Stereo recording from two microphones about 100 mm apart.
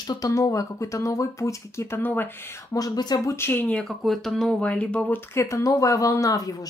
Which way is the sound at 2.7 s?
40° left (ahead or behind).